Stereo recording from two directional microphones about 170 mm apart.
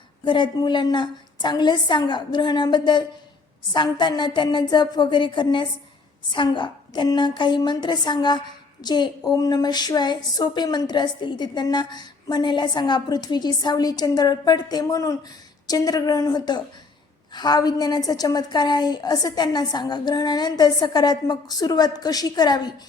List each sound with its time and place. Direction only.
0.3 s a woman's voice: 25° left (ahead or behind)